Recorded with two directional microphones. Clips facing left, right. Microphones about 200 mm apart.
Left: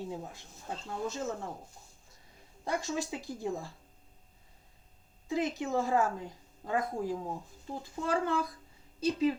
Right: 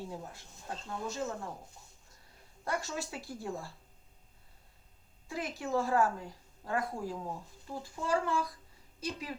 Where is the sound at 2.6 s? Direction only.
15° left (ahead or behind).